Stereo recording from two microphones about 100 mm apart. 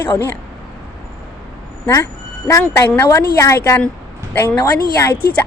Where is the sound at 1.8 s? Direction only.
25° left (ahead or behind).